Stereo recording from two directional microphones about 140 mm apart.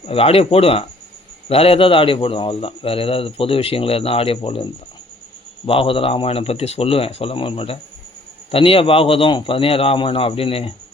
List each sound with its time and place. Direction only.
0.0 s a man's voice: 45° left (ahead or behind)